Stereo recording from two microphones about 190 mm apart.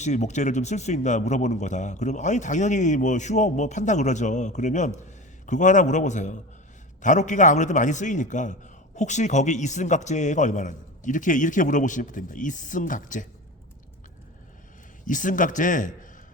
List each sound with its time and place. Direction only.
0.0 s speech: 40° left (ahead or behind)
15.0 s a man's voice: 45° left (ahead or behind)